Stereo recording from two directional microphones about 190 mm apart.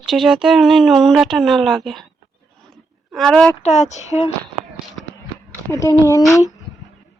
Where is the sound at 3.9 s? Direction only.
35° left (ahead or behind).